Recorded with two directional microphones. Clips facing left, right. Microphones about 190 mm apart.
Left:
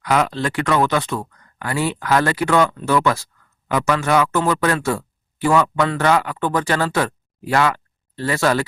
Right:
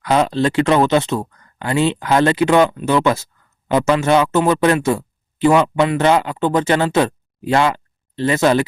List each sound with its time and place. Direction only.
0.0 s speech: 25° right (ahead or behind)